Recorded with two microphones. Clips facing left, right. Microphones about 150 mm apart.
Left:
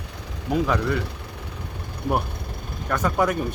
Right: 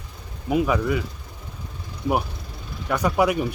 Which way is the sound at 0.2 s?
90° left.